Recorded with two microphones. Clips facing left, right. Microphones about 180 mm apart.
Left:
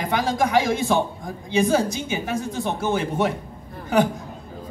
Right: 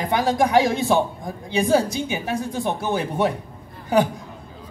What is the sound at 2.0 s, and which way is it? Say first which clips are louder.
Speech: right 1 dB; 15° right (ahead or behind).